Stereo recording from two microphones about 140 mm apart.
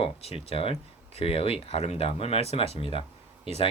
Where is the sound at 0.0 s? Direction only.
45° left (ahead or behind).